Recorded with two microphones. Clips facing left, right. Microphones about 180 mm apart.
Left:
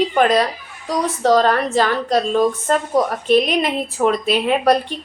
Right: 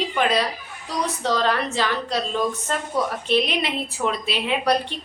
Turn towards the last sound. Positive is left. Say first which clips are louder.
# left 6 dB
turn(degrees=45)  # may be behind; listen again after turning